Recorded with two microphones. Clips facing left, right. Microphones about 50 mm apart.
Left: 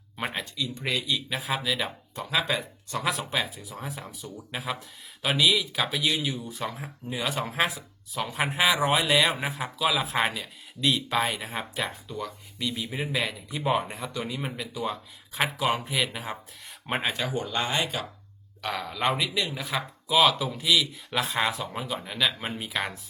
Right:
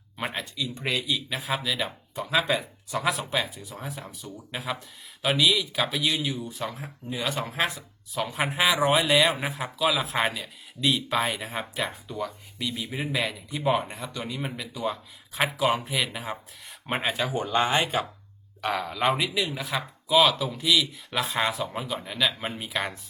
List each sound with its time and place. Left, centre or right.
0.3 s speech: centre
17.3 s speech: centre
17.7 s speech: right
18.6 s speech: centre